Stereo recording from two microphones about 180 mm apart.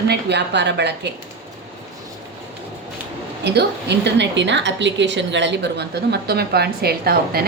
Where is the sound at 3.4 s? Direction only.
70° right (ahead or behind).